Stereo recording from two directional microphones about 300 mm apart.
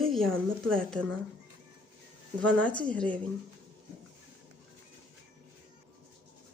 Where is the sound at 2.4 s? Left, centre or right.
Centre.